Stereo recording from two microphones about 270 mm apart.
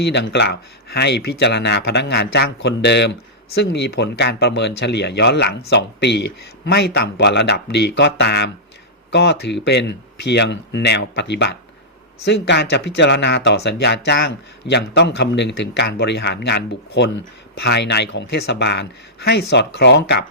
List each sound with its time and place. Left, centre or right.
0.0 s speech: left